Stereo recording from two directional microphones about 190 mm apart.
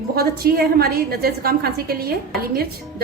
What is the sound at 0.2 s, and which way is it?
A woman's voice, 55° right (ahead or behind).